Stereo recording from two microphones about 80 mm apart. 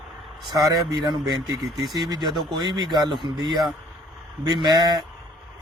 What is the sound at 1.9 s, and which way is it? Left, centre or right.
Speech, right.